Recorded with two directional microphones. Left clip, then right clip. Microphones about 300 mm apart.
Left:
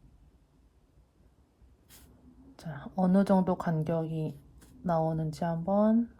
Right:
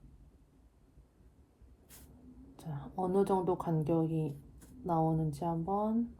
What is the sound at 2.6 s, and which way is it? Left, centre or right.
A woman's voice, left.